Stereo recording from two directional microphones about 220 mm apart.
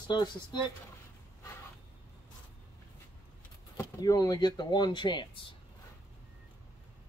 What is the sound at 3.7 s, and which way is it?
Speech, 15° left (ahead or behind).